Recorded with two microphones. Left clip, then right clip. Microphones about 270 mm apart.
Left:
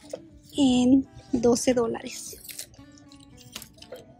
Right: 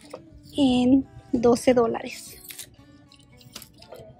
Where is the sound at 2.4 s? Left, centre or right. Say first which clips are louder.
Even; centre.